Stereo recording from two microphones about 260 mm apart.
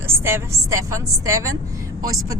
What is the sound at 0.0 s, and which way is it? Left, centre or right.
A woman's voice, centre.